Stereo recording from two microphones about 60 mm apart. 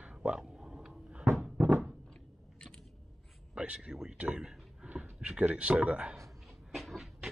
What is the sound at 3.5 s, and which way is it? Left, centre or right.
Speech, centre.